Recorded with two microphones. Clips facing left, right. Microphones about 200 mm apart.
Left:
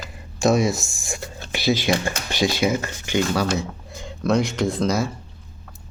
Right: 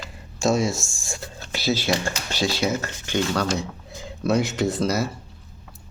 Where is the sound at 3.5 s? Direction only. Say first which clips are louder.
Left 2 dB; centre (ahead or behind).